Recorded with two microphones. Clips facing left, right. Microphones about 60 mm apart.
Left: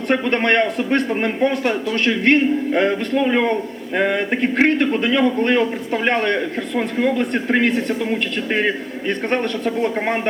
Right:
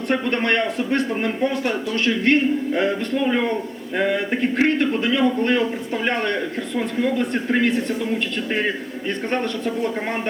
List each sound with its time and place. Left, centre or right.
0.1 s speech: left